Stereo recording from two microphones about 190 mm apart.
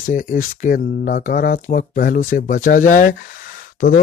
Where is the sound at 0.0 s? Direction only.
45° left (ahead or behind).